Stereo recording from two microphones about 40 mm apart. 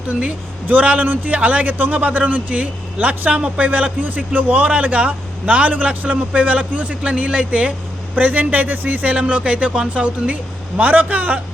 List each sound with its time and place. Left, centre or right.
0.1 s a man's voice: right
0.7 s a man's voice: right
1.4 s a man's voice: right
8.1 s a man's voice: right
10.8 s a man's voice: right